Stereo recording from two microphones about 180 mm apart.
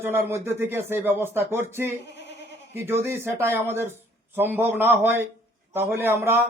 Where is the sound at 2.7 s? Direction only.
15° right (ahead or behind).